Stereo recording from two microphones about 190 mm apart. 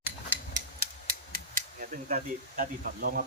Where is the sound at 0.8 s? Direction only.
45° right (ahead or behind).